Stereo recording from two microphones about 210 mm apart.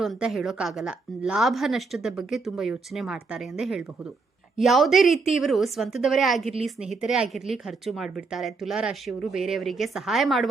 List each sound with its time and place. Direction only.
0.0 s speech: centre (ahead or behind)